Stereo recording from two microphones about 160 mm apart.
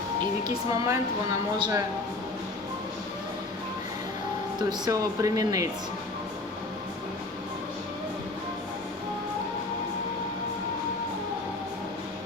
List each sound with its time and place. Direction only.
0.2 s a woman's voice: 25° right (ahead or behind)
4.9 s speech: 20° right (ahead or behind)